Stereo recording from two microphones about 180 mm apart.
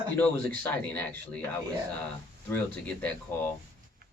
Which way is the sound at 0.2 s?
10° left (ahead or behind).